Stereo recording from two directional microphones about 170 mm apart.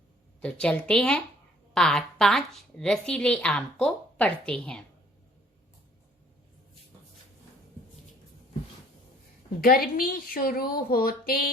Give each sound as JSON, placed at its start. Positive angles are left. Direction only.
{"t": 0.4, "sound": "a woman's voice", "side_deg": 5}
{"t": 9.6, "sound": "a woman's voice", "side_deg": 60}